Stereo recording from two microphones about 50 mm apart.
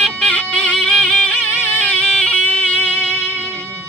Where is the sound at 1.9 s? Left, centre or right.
Centre.